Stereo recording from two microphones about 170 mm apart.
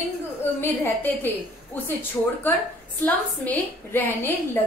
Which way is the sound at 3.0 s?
10° left (ahead or behind).